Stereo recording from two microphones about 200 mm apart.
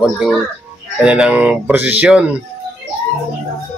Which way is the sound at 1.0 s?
5° right (ahead or behind).